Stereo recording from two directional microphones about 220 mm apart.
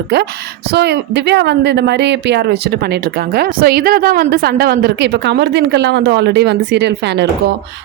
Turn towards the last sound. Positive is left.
turn(degrees=-50)  # may be behind; listen again after turning